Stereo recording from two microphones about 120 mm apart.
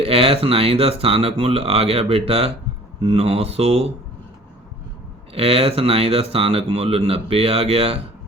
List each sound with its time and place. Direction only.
0.0 s speech: 55° right (ahead or behind)
5.3 s speech: 55° right (ahead or behind)